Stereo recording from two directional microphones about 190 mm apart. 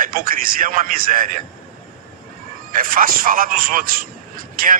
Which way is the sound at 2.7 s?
45° right (ahead or behind).